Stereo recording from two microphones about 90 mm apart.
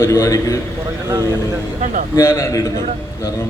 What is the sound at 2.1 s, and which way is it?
Speech, 30° left (ahead or behind).